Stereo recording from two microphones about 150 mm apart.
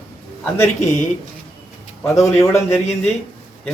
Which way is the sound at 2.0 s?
20° left (ahead or behind).